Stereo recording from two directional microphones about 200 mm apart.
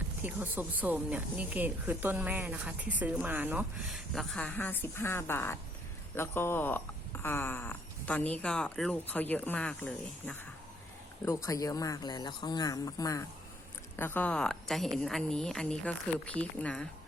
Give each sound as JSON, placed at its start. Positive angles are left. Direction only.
{"t": 0.2, "sound": "speech", "side_deg": -10}
{"t": 11.4, "sound": "speech", "side_deg": 15}